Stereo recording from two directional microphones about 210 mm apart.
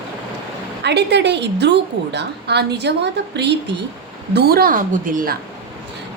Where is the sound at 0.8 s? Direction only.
55° right (ahead or behind).